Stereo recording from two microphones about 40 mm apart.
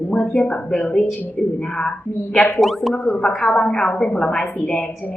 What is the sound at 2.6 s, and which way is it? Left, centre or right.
Chime, centre.